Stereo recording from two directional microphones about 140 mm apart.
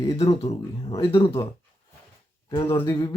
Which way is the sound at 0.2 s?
50° left (ahead or behind).